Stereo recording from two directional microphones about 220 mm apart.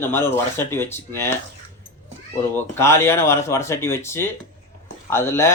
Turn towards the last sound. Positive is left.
turn(degrees=10)  # may be behind; listen again after turning